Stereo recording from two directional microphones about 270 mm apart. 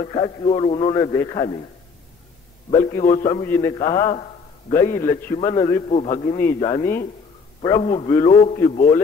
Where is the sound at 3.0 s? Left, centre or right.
Left.